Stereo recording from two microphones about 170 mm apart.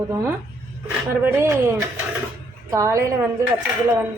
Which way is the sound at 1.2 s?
15° right (ahead or behind).